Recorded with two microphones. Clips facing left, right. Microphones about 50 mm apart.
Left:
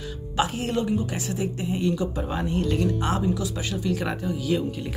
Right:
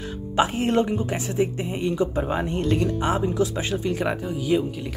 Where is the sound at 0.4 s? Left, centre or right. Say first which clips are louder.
Right 4 dB; right.